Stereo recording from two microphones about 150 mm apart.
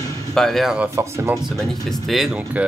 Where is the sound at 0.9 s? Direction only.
20° right (ahead or behind).